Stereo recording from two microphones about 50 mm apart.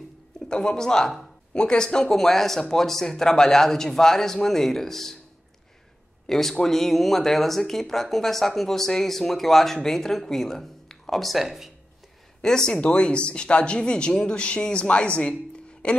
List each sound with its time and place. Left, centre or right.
0.5 s speech: centre
6.2 s speech: centre
12.4 s speech: centre